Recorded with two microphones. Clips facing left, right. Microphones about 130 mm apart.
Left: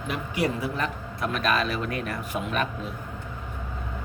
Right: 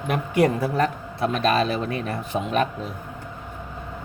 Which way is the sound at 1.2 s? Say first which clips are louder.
Right 5 dB; 30° right (ahead or behind).